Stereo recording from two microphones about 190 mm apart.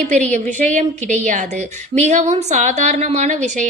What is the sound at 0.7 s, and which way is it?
A woman's voice, 40° right (ahead or behind).